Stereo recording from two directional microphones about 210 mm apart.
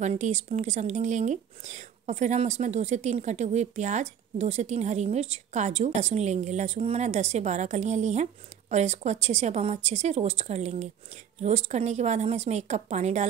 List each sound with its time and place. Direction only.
0.0 s speech: 35° right (ahead or behind)